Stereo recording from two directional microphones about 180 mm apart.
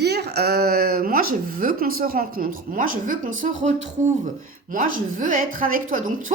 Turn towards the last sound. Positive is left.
turn(degrees=-45)  # may be behind; listen again after turning